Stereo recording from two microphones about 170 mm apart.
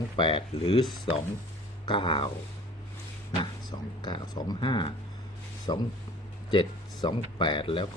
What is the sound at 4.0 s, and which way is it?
Speech, 25° left (ahead or behind).